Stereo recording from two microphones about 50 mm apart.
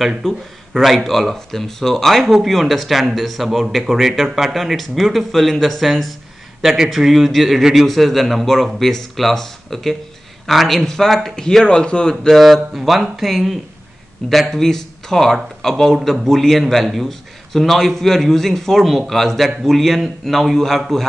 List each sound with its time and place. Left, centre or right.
0.2 s a man's voice: centre
11.3 s speech: centre
12.4 s a man's voice: centre